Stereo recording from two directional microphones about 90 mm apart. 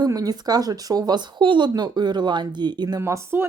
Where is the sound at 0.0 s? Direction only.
45° right (ahead or behind).